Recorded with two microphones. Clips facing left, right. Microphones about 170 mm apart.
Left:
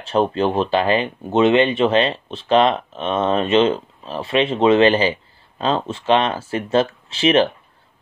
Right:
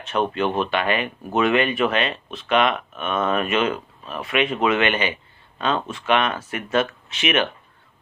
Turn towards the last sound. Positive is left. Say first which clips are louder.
# left 7 dB
turn(degrees=30)  # may be behind; listen again after turning